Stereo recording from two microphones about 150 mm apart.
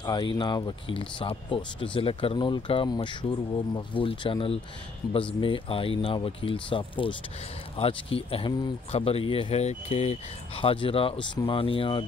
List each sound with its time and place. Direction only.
0.0 s speech: 30° left (ahead or behind)